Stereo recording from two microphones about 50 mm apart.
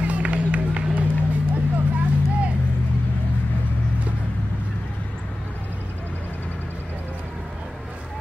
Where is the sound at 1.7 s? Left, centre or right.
Right.